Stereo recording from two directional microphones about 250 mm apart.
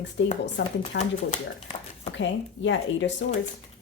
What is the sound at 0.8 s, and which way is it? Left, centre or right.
Speech, left.